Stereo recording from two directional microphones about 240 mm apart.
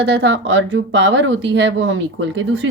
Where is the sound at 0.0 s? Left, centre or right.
Right.